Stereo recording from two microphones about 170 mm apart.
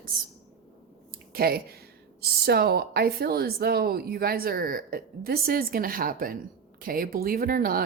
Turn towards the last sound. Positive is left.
turn(degrees=-60)  # may be behind; listen again after turning